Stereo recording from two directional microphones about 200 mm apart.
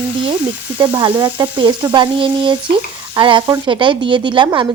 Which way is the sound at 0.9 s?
20° right (ahead or behind).